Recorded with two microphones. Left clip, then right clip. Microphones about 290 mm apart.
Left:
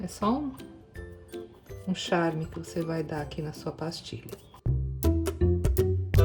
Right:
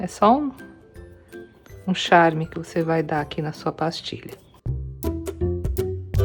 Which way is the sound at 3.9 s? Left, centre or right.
Centre.